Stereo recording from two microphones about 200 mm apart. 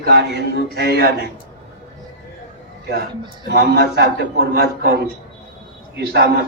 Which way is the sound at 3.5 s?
55° right (ahead or behind).